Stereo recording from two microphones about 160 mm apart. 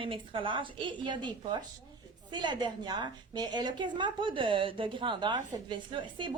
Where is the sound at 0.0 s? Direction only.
30° right (ahead or behind).